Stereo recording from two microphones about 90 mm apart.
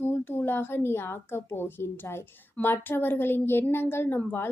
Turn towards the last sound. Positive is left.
turn(degrees=20)  # may be behind; listen again after turning